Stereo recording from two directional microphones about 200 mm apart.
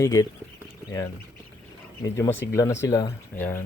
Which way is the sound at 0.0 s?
15° left (ahead or behind).